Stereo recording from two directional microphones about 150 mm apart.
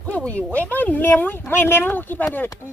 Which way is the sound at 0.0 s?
10° left (ahead or behind).